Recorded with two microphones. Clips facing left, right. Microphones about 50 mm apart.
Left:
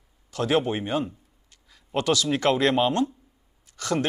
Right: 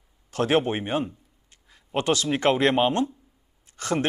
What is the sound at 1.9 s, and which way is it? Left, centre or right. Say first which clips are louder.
Speech: even; right.